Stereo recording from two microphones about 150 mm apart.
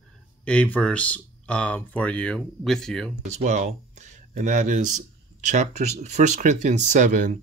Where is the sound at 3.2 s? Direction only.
50° right (ahead or behind).